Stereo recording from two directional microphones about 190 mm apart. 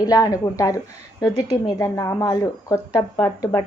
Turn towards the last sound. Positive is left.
turn(degrees=20)  # may be behind; listen again after turning